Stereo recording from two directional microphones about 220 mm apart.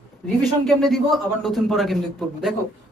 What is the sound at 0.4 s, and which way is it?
Speech, centre (ahead or behind).